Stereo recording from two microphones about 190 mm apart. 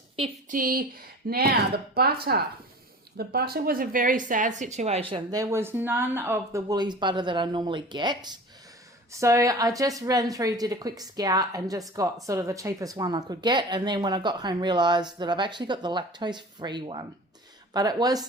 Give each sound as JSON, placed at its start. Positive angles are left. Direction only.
{"t": 0.4, "sound": "speech", "side_deg": -45}